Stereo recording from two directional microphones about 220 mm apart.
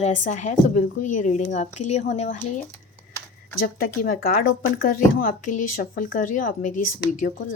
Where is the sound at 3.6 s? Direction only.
40° left (ahead or behind).